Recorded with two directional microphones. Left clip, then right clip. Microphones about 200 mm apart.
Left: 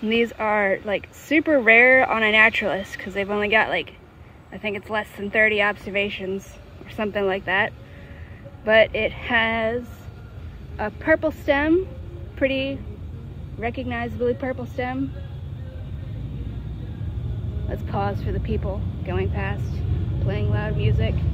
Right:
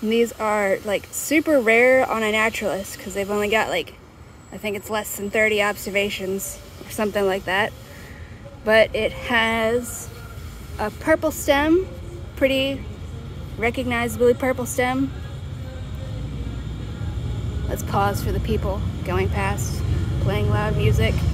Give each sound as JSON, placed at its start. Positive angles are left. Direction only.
{"t": 0.0, "sound": "speech", "side_deg": -10}
{"t": 10.8, "sound": "speech", "side_deg": -15}
{"t": 17.6, "sound": "speech", "side_deg": -15}